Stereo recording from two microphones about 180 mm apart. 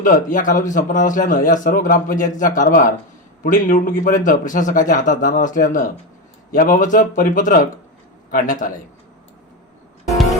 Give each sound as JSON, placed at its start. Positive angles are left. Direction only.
{"t": 0.0, "sound": "a man's voice", "side_deg": 50}